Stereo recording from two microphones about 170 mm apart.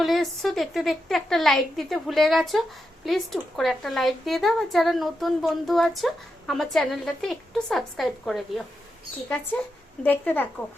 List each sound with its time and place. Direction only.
0.0 s a woman's voice: centre (ahead or behind)
10.0 s a woman's voice: 10° left (ahead or behind)